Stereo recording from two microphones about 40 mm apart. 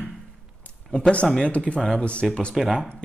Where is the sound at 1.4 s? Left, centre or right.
Left.